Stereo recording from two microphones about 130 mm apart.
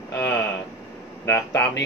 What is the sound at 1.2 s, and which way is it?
Speech, 20° left (ahead or behind).